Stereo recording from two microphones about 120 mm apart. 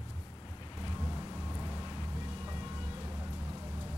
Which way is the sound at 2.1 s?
35° right (ahead or behind).